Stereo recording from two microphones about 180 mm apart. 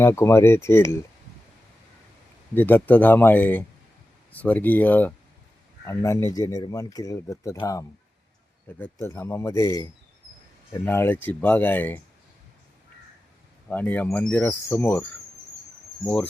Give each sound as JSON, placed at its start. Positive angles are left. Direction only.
{"t": 0.0, "sound": "speech", "side_deg": 15}
{"t": 2.6, "sound": "speech", "side_deg": 10}
{"t": 13.7, "sound": "speech", "side_deg": 10}